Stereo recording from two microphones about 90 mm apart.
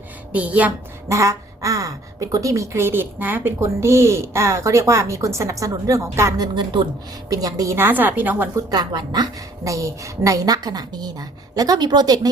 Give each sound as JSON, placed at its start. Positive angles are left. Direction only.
{"t": 0.3, "sound": "a woman's voice", "side_deg": -15}
{"t": 1.0, "sound": "a woman's voice", "side_deg": -35}
{"t": 3.6, "sound": "a woman's voice", "side_deg": -30}
{"t": 6.4, "sound": "a woman's voice", "side_deg": -60}
{"t": 7.3, "sound": "a woman's voice", "side_deg": -40}
{"t": 7.8, "sound": "a woman's voice", "side_deg": -20}
{"t": 8.5, "sound": "a woman's voice", "side_deg": -50}
{"t": 9.6, "sound": "a woman's voice", "side_deg": -35}